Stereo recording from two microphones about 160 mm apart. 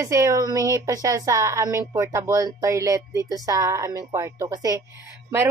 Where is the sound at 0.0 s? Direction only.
20° right (ahead or behind).